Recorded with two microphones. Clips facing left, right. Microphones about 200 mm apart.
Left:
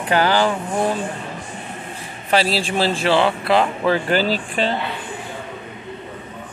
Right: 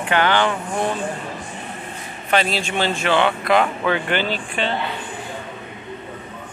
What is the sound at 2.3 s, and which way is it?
Speech, 30° left (ahead or behind).